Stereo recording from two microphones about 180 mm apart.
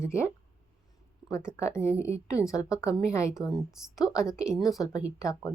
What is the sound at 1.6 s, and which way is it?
A woman's voice, 15° left (ahead or behind).